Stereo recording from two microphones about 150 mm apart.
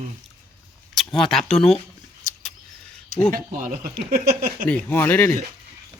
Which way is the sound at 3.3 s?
70° right (ahead or behind).